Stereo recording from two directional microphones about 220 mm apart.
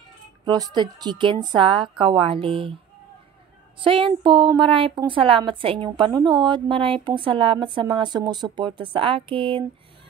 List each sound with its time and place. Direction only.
0.5 s a woman's voice: 20° right (ahead or behind)
3.8 s a woman's voice: 25° right (ahead or behind)